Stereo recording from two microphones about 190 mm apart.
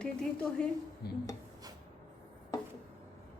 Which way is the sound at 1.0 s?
55° left (ahead or behind).